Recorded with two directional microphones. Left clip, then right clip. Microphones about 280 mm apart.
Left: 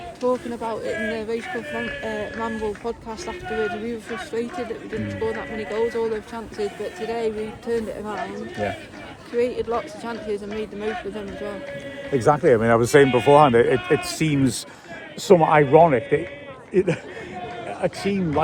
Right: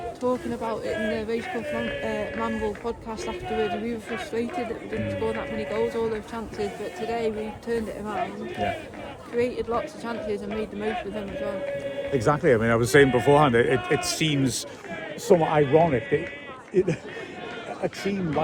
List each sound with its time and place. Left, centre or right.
0.2 s speech: centre
5.2 s speech: centre
9.4 s speech: centre
12.1 s speech: centre
13.7 s speech: right
14.2 s a man's voice: left
15.7 s a man's voice: centre